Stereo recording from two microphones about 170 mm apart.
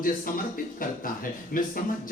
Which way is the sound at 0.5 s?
55° left (ahead or behind).